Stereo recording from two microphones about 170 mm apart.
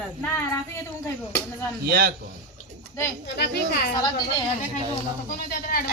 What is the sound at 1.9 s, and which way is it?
Speech, 65° right (ahead or behind).